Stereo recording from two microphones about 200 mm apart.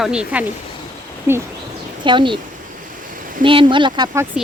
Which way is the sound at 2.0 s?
25° right (ahead or behind).